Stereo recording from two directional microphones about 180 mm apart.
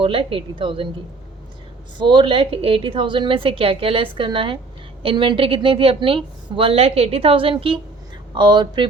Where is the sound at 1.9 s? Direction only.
25° right (ahead or behind).